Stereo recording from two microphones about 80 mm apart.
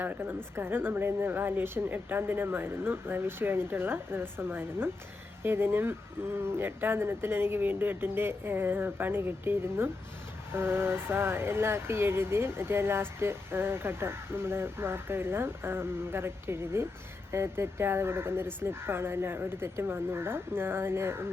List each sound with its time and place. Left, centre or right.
0.0 s speech: right